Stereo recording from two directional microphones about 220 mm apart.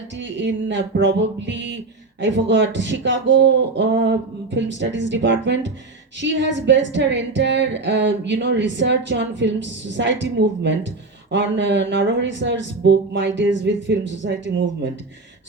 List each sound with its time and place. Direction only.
0.2 s speech: 55° right (ahead or behind)